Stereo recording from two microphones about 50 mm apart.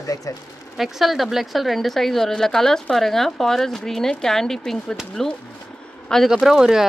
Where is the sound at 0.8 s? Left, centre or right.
Centre.